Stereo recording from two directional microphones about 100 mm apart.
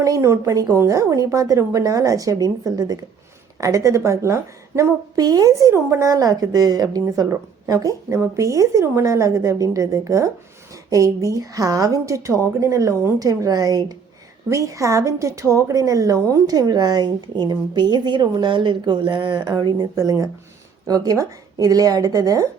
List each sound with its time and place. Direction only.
0.0 s a woman's voice: 30° right (ahead or behind)